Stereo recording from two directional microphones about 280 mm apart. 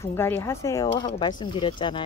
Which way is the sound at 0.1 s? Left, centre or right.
Centre.